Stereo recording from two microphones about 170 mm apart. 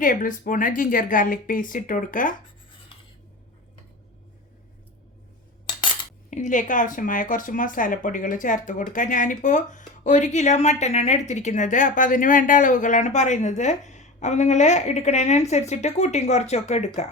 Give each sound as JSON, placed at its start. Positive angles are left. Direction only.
{"t": 0.0, "sound": "speech", "side_deg": 50}
{"t": 5.6, "sound": "cutlery", "side_deg": 30}
{"t": 6.3, "sound": "speech", "side_deg": 50}